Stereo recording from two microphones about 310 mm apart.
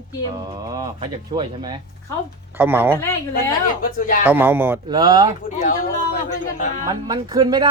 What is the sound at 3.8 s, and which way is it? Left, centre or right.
Speech, left.